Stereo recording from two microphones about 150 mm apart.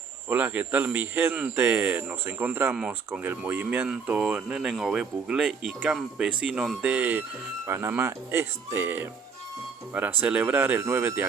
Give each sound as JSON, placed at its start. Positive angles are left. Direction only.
{"t": 0.3, "sound": "speech", "side_deg": -10}